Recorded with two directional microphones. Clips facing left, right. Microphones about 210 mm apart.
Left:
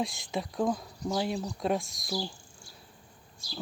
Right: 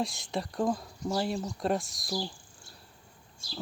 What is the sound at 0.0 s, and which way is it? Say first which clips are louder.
Speech: even; centre (ahead or behind).